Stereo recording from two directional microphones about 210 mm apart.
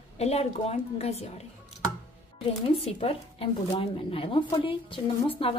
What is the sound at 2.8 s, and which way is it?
Speech, 30° left (ahead or behind).